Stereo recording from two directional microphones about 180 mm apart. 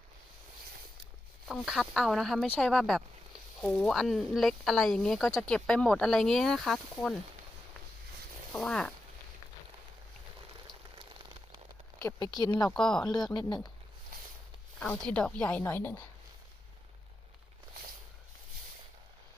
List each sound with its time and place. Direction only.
1.5 s speech: centre (ahead or behind)
8.5 s speech: 5° left (ahead or behind)
11.9 s speech: 20° left (ahead or behind)
12.7 s speech: 5° left (ahead or behind)
13.3 s speech: 25° left (ahead or behind)
14.8 s speech: 5° left (ahead or behind)